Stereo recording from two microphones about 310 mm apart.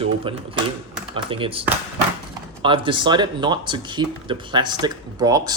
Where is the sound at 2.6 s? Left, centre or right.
Centre.